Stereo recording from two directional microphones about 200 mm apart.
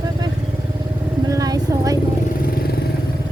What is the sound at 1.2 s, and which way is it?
Vehicle, 15° right (ahead or behind).